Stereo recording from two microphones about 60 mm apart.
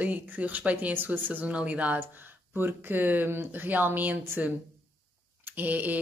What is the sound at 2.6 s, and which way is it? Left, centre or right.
Speech, right.